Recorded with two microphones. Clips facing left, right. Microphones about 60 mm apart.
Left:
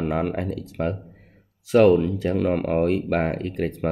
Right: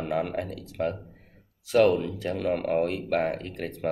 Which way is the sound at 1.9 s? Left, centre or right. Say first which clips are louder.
Left 7 dB; left.